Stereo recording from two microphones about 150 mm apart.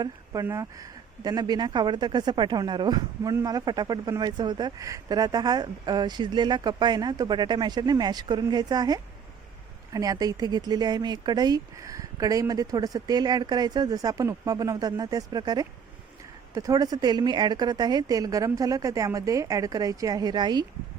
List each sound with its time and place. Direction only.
0.4 s speech: 20° right (ahead or behind)